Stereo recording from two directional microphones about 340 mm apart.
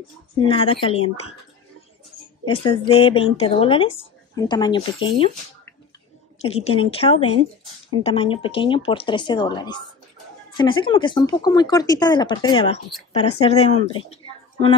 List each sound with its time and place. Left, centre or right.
0.4 s speech: centre
2.4 s speech: centre